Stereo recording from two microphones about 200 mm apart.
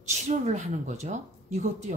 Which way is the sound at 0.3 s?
35° right (ahead or behind).